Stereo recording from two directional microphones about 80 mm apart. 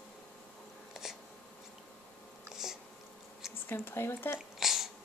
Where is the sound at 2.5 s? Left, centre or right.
Centre.